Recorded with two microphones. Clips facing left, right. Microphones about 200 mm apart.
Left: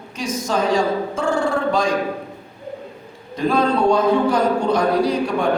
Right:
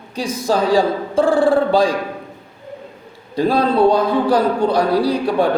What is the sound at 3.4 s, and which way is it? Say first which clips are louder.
A man's voice: right 3 dB; 35° right (ahead or behind).